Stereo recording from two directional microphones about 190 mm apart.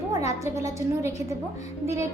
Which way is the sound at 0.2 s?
15° right (ahead or behind).